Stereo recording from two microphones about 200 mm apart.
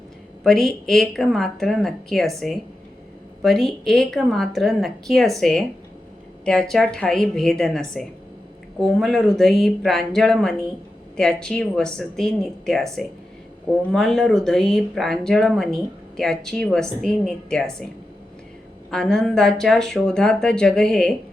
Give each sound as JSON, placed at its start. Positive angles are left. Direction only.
{"t": 0.4, "sound": "speech", "side_deg": 0}
{"t": 18.9, "sound": "speech", "side_deg": 5}